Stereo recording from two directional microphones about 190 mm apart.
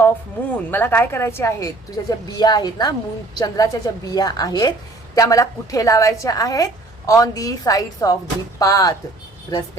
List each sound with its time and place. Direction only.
0.7 s a woman's voice: 10° left (ahead or behind)